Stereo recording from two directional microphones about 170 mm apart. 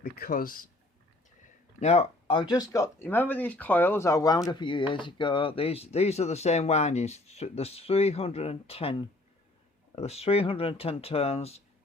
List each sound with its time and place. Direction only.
0.0 s speech: 60° left (ahead or behind)
1.8 s speech: 40° left (ahead or behind)